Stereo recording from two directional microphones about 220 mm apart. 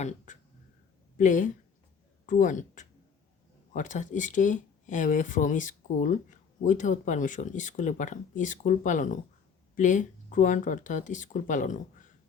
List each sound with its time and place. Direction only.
1.1 s speech: 35° left (ahead or behind)